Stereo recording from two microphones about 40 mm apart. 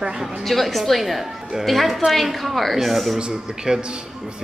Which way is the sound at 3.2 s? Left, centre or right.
Right.